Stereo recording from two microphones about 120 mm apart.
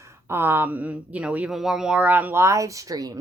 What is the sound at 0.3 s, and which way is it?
Speech, 20° right (ahead or behind).